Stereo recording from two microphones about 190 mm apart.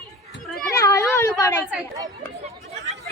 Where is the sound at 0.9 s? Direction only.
15° left (ahead or behind).